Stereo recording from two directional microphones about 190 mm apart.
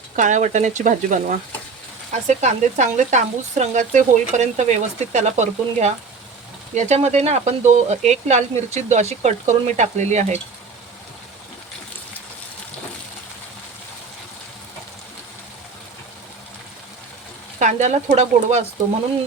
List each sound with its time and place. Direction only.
0.2 s speech: 40° right (ahead or behind)
17.6 s speech: 40° right (ahead or behind)